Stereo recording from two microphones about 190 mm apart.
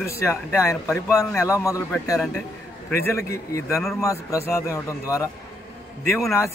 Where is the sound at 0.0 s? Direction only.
15° left (ahead or behind).